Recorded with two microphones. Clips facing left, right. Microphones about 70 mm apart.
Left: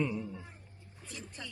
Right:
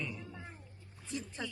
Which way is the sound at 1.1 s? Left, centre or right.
Right.